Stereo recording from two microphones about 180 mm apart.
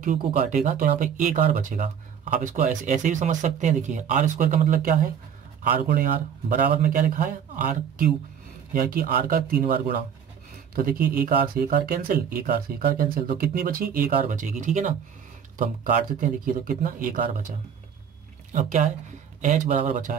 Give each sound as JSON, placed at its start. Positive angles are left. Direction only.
{"t": 0.0, "sound": "speech", "side_deg": -45}
{"t": 18.5, "sound": "speech", "side_deg": -40}